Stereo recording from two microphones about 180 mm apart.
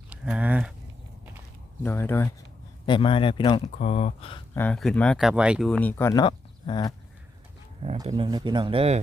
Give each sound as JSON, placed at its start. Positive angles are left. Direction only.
{"t": 0.1, "sound": "speech", "side_deg": -5}
{"t": 1.8, "sound": "speech", "side_deg": 10}
{"t": 2.8, "sound": "speech", "side_deg": 30}
{"t": 3.8, "sound": "speech", "side_deg": 40}
{"t": 4.5, "sound": "speech", "side_deg": 5}
{"t": 6.2, "sound": "speech", "side_deg": 25}
{"t": 8.1, "sound": "speech", "side_deg": -25}